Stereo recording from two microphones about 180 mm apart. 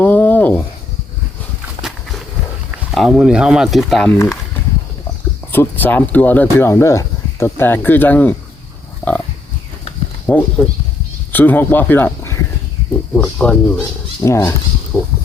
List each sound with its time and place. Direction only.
0.0 s a sound: 10° left (ahead or behind)
2.7 s speech: 5° right (ahead or behind)
5.5 s speech: 10° left (ahead or behind)
10.3 s speech: 10° left (ahead or behind)
14.2 s speech: 15° left (ahead or behind)
14.9 s speech: 5° left (ahead or behind)